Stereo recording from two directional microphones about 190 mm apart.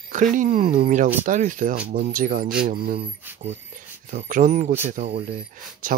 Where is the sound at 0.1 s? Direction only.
45° right (ahead or behind).